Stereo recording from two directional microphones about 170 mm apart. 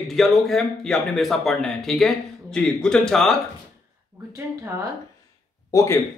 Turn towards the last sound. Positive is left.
turn(degrees=20)  # may be behind; listen again after turning